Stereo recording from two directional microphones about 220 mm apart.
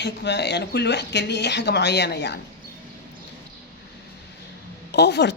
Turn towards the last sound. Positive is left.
turn(degrees=50)  # may be behind; listen again after turning